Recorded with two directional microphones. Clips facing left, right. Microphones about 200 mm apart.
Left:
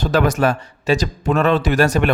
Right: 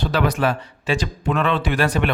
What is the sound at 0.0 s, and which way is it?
Speech, 45° left (ahead or behind).